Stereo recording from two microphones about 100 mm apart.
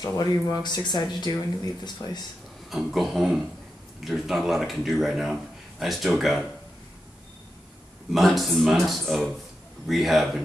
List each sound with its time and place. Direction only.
0.0 s speech: 35° left (ahead or behind)
2.7 s speech: centre (ahead or behind)
8.1 s speech: centre (ahead or behind)